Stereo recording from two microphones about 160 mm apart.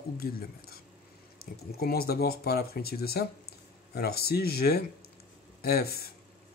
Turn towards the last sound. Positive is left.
turn(degrees=75)  # may be behind; listen again after turning